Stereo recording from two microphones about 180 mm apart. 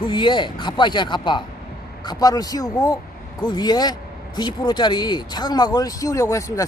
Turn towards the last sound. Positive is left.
turn(degrees=15)  # may be behind; listen again after turning